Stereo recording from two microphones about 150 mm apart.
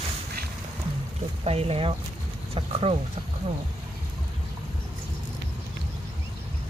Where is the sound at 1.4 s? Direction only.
45° right (ahead or behind).